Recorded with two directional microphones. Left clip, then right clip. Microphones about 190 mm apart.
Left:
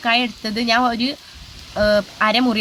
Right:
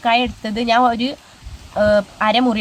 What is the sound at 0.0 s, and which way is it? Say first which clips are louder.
Speech: right 2 dB; centre (ahead or behind).